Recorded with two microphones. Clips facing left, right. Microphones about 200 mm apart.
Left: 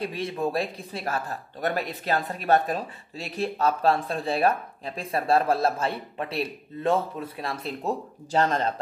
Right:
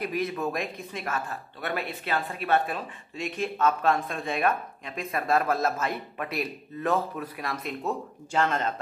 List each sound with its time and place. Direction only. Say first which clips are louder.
0.0 s speech: left 1 dB; 30° left (ahead or behind)